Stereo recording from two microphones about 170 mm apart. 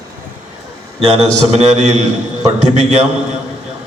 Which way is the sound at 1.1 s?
40° right (ahead or behind).